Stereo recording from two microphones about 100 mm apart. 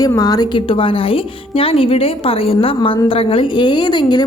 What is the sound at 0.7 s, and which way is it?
A woman's voice, 65° left (ahead or behind).